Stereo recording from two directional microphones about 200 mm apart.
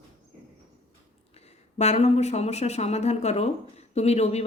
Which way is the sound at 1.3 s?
30° left (ahead or behind).